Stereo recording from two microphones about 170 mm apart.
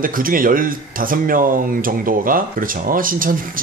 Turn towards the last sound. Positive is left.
turn(degrees=-55)  # may be behind; listen again after turning